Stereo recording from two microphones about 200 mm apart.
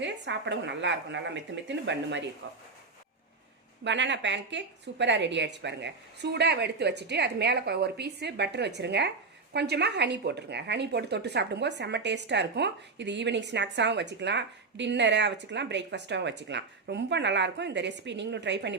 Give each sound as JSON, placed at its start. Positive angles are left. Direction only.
{"t": 0.0, "sound": "speech", "side_deg": -65}
{"t": 2.4, "sound": "speech", "side_deg": -75}
{"t": 3.8, "sound": "speech", "side_deg": -65}